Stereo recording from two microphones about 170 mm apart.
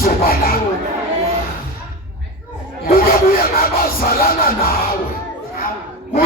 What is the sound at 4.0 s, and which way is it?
Music, 60° left (ahead or behind).